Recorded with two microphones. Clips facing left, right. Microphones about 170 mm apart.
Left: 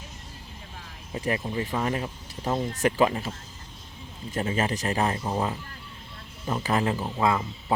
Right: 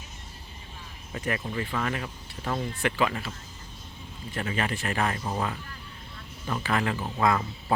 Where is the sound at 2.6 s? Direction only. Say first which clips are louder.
Left 5 dB; 45° left (ahead or behind).